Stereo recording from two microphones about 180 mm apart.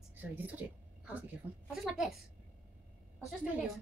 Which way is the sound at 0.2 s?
10° right (ahead or behind).